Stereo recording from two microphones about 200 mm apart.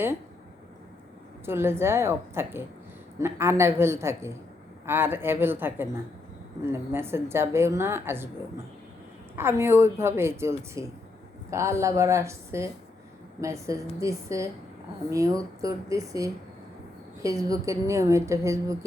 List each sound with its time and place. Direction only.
1.5 s a woman's voice: 10° right (ahead or behind)
9.3 s a woman's voice: 10° right (ahead or behind)